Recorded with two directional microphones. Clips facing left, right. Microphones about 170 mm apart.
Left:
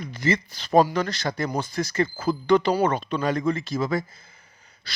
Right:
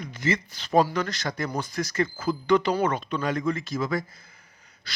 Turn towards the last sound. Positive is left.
turn(degrees=30)  # may be behind; listen again after turning